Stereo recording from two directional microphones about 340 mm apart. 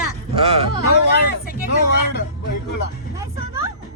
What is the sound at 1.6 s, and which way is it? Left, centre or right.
Speech, left.